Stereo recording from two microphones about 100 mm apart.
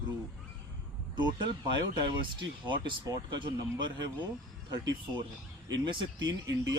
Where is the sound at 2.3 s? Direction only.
55° right (ahead or behind).